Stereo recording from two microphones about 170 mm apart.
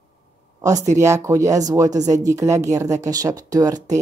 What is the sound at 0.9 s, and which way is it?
Speech, 20° right (ahead or behind).